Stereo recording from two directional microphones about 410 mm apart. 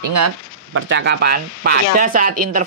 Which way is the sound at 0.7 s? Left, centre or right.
Right.